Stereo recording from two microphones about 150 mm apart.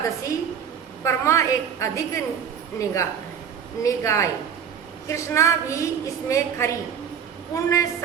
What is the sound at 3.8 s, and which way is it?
A woman's voice, 20° left (ahead or behind).